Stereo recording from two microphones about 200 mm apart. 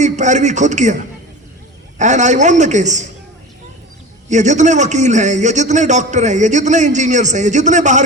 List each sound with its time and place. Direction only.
0.0 s a man's voice: 35° right (ahead or behind)
4.3 s a man's voice: 35° right (ahead or behind)